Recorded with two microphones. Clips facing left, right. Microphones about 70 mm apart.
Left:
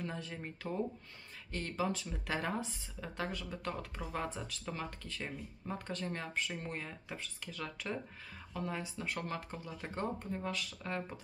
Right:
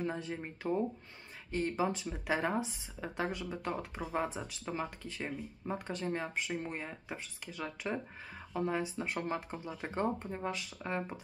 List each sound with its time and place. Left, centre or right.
0.0 s speech: right